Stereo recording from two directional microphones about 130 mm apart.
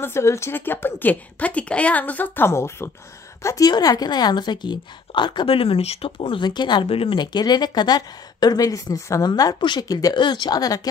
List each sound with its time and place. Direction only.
0.0 s a woman's voice: 20° left (ahead or behind)